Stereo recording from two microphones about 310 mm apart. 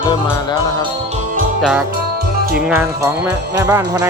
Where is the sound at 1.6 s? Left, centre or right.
Centre.